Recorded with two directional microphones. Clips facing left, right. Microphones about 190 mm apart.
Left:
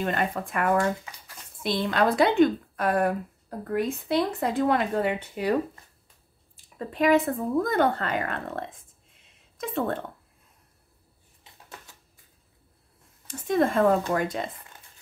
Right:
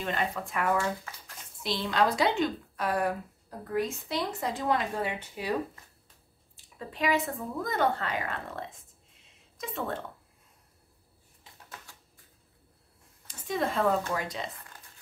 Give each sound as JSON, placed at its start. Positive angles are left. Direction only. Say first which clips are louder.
{"t": 0.0, "sound": "a woman's voice", "louder": "left 4 dB", "side_deg": 50}
{"t": 13.3, "sound": "speech", "louder": "left 7 dB", "side_deg": 50}